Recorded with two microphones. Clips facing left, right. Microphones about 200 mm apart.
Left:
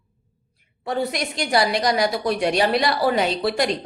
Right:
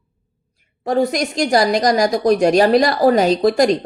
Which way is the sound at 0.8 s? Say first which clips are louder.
Right 7 dB; 45° right (ahead or behind).